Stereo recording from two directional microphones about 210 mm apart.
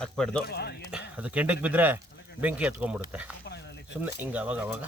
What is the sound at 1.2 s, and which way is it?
Speech, 5° right (ahead or behind).